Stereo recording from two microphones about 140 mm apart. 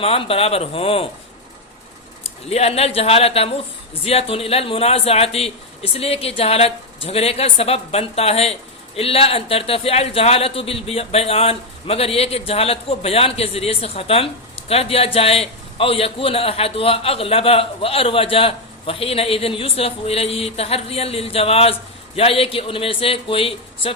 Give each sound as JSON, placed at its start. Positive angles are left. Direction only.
{"t": 0.0, "sound": "a man's voice", "side_deg": 45}
{"t": 2.5, "sound": "a man's voice", "side_deg": 45}